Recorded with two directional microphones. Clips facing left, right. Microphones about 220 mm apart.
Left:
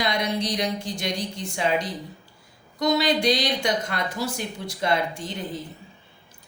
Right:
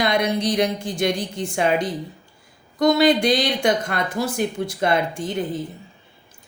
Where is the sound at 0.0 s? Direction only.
55° right (ahead or behind).